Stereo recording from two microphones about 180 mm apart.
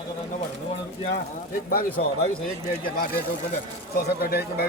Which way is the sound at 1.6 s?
55° left (ahead or behind).